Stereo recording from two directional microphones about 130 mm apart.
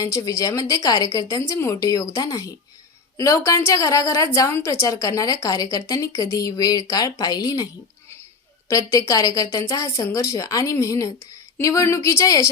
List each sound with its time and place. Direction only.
0.0 s a woman's voice: 25° left (ahead or behind)
8.7 s a woman's voice: 25° left (ahead or behind)